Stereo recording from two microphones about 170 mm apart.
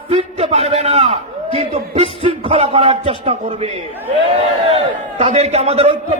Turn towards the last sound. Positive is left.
turn(degrees=-40)  # may be behind; listen again after turning